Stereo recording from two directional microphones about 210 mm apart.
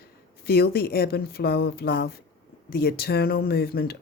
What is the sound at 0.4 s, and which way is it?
Speech, 45° left (ahead or behind).